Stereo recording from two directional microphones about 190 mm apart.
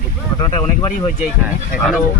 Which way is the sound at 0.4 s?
25° left (ahead or behind).